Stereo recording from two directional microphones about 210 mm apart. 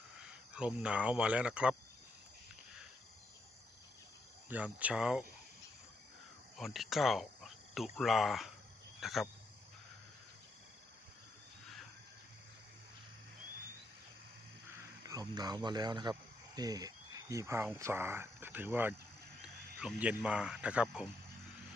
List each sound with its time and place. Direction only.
0.2 s speech: 5° right (ahead or behind)
4.4 s speech: 5° right (ahead or behind)
6.6 s speech: centre (ahead or behind)
9.0 s cricket: centre (ahead or behind)
15.0 s speech: 15° right (ahead or behind)